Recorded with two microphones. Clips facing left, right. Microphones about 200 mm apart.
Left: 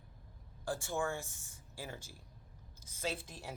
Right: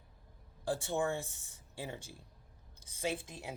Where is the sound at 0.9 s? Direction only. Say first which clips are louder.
Right 2 dB; 20° right (ahead or behind).